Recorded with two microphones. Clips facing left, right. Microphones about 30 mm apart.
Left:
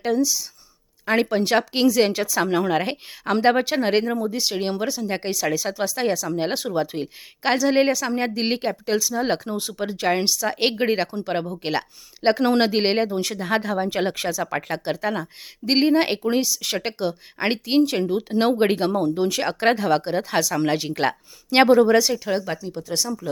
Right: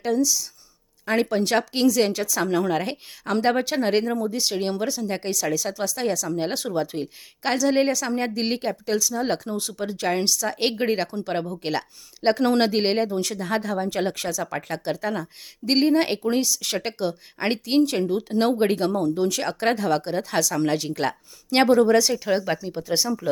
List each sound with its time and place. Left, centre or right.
0.0 s speech: centre